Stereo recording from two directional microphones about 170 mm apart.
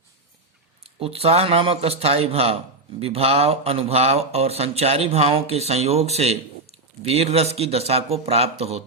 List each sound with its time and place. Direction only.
0.9 s speech: 35° right (ahead or behind)